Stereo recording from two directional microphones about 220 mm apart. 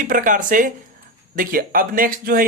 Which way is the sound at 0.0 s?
35° right (ahead or behind).